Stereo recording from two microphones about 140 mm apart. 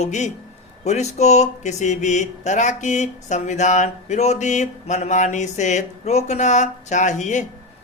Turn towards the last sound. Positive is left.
turn(degrees=60)  # may be behind; listen again after turning